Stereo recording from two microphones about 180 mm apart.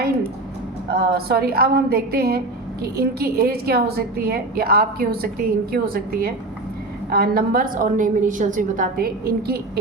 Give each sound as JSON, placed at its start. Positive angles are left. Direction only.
{"t": 0.9, "sound": "a woman's voice", "side_deg": -60}